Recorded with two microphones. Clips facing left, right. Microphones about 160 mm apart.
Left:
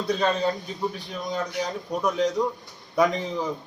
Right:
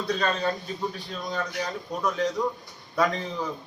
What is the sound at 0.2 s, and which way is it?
A man's voice, 15° left (ahead or behind).